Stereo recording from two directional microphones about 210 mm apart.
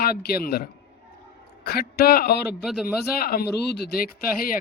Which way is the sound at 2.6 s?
Centre (ahead or behind).